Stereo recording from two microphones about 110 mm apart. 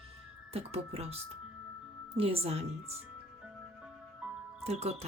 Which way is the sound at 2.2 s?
60° right (ahead or behind).